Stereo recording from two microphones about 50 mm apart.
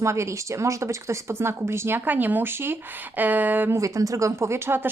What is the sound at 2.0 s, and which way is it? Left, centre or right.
Speech, right.